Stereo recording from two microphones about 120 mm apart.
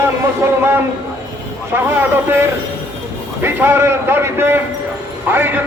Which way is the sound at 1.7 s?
20° right (ahead or behind).